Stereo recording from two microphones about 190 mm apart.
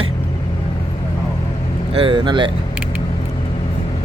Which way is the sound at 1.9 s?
30° right (ahead or behind).